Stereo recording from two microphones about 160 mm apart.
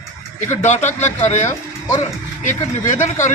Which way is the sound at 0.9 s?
45° left (ahead or behind).